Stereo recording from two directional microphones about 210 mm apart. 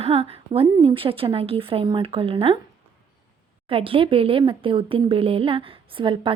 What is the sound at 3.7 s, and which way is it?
Speech, 25° right (ahead or behind).